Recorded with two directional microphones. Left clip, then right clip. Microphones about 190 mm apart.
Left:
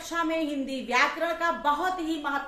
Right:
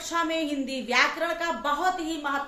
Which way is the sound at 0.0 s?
15° right (ahead or behind).